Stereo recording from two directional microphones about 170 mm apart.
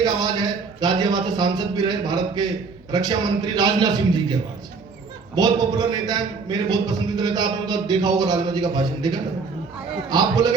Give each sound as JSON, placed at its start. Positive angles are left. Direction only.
{"t": 0.0, "sound": "a man's voice", "side_deg": -25}